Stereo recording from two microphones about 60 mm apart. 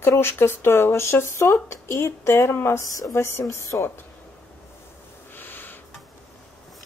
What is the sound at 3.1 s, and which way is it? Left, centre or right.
Speech, left.